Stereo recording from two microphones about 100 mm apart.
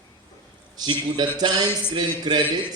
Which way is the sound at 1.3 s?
50° right (ahead or behind).